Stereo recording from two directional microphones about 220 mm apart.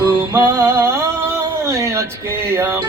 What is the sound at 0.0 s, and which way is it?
Music, 10° right (ahead or behind).